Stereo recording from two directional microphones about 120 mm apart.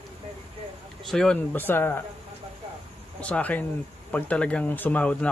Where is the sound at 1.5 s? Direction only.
15° left (ahead or behind).